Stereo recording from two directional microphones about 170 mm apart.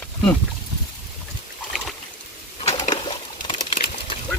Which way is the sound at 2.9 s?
25° left (ahead or behind).